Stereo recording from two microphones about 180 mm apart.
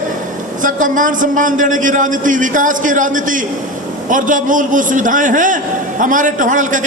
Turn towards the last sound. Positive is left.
turn(degrees=-45)  # may be behind; listen again after turning